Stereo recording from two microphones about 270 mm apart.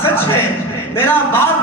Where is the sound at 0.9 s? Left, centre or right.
Centre.